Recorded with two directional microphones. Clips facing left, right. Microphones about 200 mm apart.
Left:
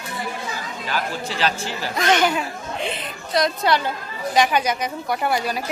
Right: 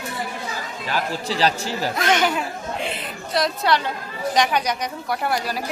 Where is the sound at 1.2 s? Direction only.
35° right (ahead or behind).